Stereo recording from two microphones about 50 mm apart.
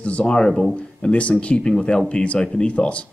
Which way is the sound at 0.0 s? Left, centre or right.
Left.